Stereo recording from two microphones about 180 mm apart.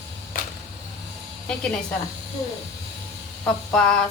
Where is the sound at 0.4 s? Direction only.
50° left (ahead or behind).